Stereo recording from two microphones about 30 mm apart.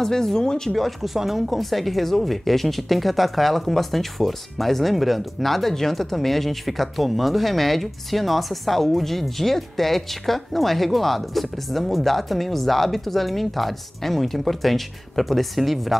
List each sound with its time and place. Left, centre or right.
0.0 s speech: centre
0.7 s speech: centre